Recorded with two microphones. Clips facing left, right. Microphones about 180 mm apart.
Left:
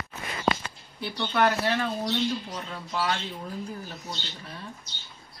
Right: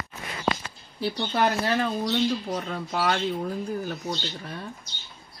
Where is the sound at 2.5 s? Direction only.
55° right (ahead or behind).